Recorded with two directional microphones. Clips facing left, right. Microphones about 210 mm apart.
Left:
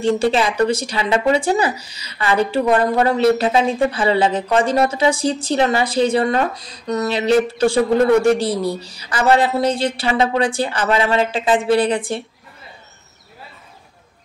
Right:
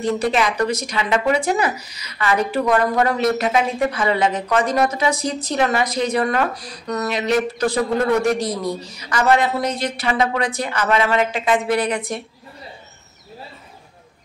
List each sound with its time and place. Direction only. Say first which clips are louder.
0.0 s speech: left 3 dB; 30° left (ahead or behind)